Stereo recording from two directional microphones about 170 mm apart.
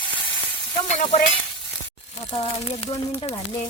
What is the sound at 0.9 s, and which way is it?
Speech, 40° left (ahead or behind).